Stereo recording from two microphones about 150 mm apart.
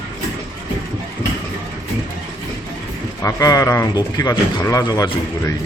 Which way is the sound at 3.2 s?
25° left (ahead or behind).